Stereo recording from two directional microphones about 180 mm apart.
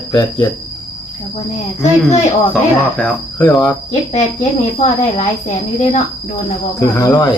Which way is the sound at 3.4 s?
20° left (ahead or behind).